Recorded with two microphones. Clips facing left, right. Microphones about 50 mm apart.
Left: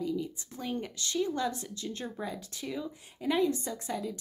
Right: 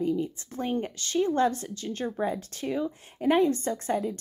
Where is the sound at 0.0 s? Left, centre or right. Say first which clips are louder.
Right 6 dB; right.